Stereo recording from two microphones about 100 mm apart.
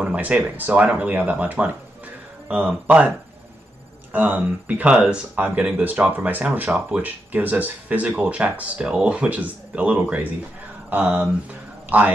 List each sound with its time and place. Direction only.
0.0 s speech: 10° right (ahead or behind)
4.1 s speech: 20° right (ahead or behind)